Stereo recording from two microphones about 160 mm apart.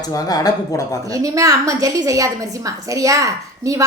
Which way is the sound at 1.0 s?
20° right (ahead or behind).